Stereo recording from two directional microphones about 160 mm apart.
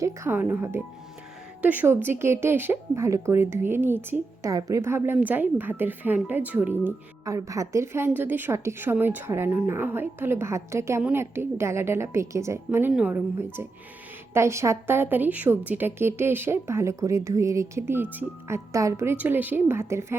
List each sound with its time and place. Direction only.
0.0 s speech: 15° right (ahead or behind)